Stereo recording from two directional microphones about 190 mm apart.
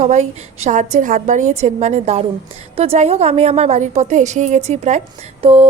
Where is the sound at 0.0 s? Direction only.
35° right (ahead or behind).